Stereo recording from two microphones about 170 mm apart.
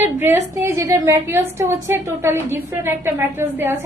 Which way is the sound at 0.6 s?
15° right (ahead or behind).